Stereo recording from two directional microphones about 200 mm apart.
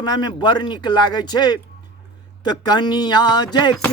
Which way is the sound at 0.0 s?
20° left (ahead or behind).